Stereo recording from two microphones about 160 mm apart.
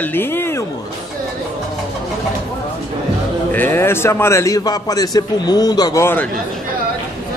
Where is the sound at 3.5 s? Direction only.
15° left (ahead or behind).